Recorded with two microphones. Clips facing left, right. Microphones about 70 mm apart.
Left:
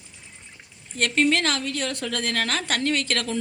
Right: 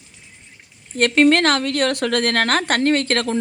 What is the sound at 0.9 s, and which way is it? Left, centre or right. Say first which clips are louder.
A woman's voice: right 7 dB; right.